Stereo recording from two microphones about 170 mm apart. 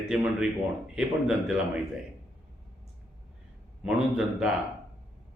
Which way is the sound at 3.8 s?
5° right (ahead or behind).